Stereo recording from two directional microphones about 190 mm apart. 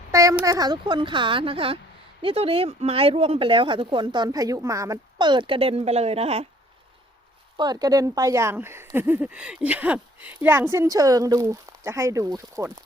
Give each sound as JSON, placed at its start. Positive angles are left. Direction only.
{"t": 0.1, "sound": "speech", "side_deg": -15}
{"t": 7.5, "sound": "speech", "side_deg": -20}